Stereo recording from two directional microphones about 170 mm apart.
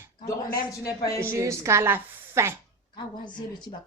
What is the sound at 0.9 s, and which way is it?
Speech, 20° left (ahead or behind).